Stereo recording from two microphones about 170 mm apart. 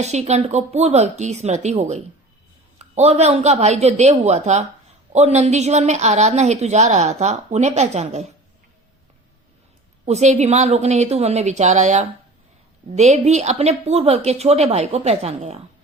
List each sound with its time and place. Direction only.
0.0 s a woman's voice: 40° right (ahead or behind)
10.1 s a woman's voice: 40° right (ahead or behind)